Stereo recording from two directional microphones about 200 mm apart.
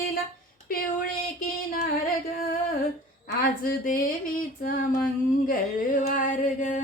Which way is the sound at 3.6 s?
45° left (ahead or behind).